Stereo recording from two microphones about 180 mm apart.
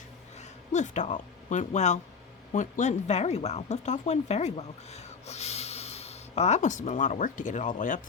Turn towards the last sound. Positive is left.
turn(degrees=45)  # may be behind; listen again after turning